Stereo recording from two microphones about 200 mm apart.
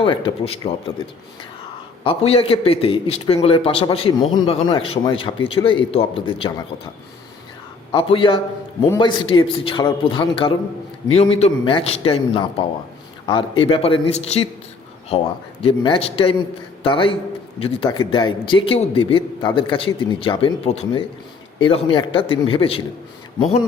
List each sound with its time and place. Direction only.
0.0 s a man's voice: 30° left (ahead or behind)
2.0 s a man's voice: 30° left (ahead or behind)
7.9 s a man's voice: 25° left (ahead or behind)
15.6 s a man's voice: 25° left (ahead or behind)